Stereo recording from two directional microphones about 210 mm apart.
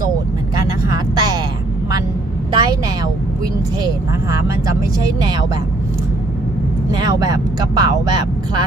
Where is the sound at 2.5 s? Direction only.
20° right (ahead or behind).